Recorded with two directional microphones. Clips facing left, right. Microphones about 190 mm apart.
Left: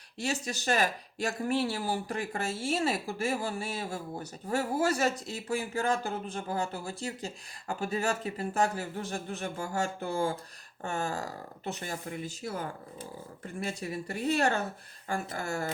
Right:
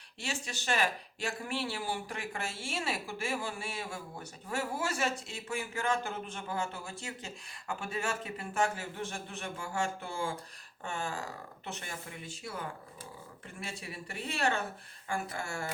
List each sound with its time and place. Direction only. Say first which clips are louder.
0.2 s speech: left 6 dB; 40° left (ahead or behind)